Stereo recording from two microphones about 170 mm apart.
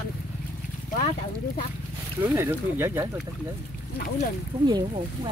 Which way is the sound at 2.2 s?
15° right (ahead or behind).